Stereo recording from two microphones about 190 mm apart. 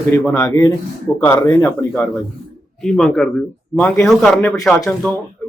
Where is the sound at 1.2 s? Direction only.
10° left (ahead or behind).